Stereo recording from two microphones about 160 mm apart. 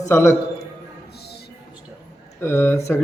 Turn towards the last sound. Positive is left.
turn(degrees=15)  # may be behind; listen again after turning